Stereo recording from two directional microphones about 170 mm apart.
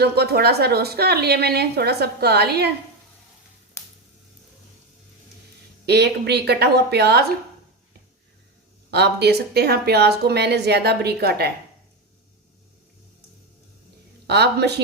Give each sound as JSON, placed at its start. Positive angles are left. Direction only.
{"t": 0.0, "sound": "a woman's voice", "side_deg": -70}
{"t": 5.8, "sound": "a woman's voice", "side_deg": -80}
{"t": 8.9, "sound": "a woman's voice", "side_deg": -80}
{"t": 14.3, "sound": "a woman's voice", "side_deg": -75}